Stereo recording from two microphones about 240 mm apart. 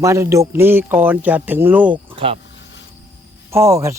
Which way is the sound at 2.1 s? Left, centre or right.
Right.